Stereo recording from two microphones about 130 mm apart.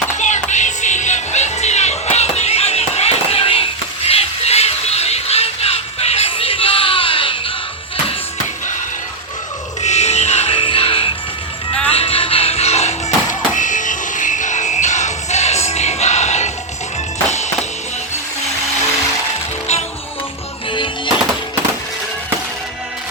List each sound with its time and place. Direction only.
0.2 s music: 65° left (ahead or behind); by 7.5 s 40° left (ahead or behind)
9.8 s music: 60° left (ahead or behind)
13.6 s music: 75° left (ahead or behind); by 16.5 s 60° left (ahead or behind)
20.7 s music: 40° left (ahead or behind)